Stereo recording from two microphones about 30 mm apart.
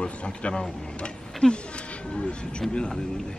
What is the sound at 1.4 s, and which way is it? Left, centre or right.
Speech, left.